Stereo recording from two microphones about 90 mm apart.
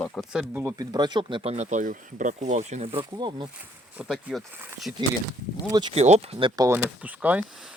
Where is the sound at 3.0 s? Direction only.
55° right (ahead or behind).